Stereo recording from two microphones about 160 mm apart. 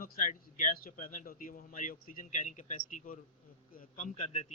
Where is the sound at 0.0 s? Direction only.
60° left (ahead or behind).